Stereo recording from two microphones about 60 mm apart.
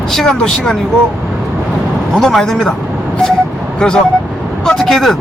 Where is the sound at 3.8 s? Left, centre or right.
Centre.